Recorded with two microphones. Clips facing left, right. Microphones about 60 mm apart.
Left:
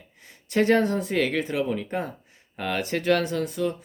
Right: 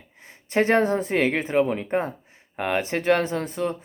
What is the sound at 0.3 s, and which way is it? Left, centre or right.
Speech, right.